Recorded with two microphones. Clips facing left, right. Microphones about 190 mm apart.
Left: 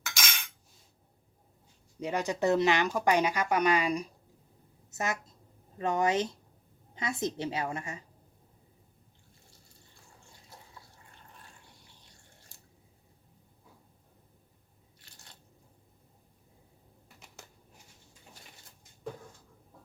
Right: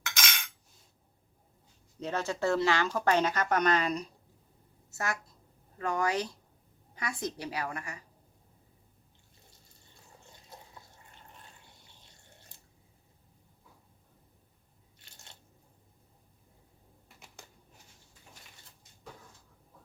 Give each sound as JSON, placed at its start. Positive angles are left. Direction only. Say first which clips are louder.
{"t": 0.0, "sound": "cutlery", "louder": "right 1 dB", "side_deg": 5}
{"t": 2.0, "sound": "a woman's voice", "louder": "left 2 dB", "side_deg": 15}